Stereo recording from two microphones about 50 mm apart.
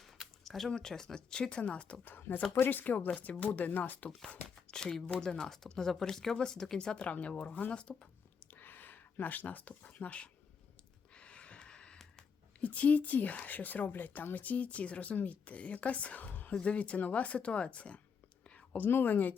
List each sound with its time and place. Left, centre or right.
0.4 s speech: centre; by 2.0 s left
2.0 s a woman's voice: left
4.7 s speech: centre
8.5 s speech: left
11.1 s a sound: left
12.5 s a woman's voice: left
18.4 s whispering: left
18.8 s a woman's voice: left